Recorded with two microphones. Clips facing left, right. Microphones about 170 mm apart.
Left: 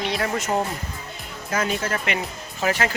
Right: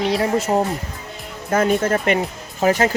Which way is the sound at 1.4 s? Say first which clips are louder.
Right 8 dB; 50° right (ahead or behind).